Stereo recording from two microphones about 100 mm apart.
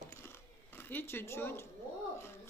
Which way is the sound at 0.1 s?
25° left (ahead or behind).